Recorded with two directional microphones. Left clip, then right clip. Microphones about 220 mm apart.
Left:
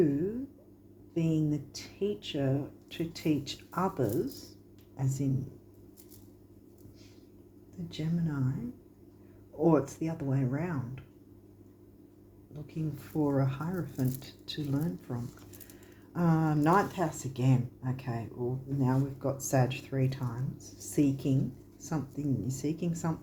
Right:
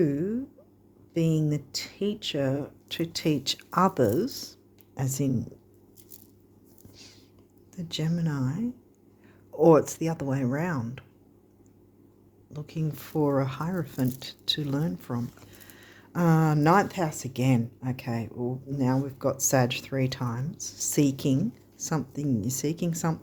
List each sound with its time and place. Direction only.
0.0 s speech: 50° right (ahead or behind)
7.9 s speech: 50° right (ahead or behind)
9.6 s speech: 50° right (ahead or behind)
12.6 s speech: 50° right (ahead or behind)